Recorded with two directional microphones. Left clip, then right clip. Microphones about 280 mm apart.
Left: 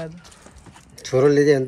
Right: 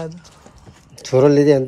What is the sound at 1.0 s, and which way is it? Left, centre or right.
Speech, centre.